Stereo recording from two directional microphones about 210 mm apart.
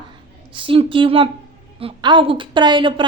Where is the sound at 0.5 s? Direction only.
25° right (ahead or behind).